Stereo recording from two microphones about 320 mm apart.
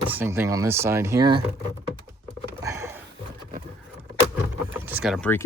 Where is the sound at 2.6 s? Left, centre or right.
Centre.